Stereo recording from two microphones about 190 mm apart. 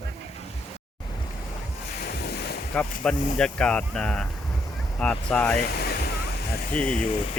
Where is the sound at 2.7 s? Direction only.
5° left (ahead or behind).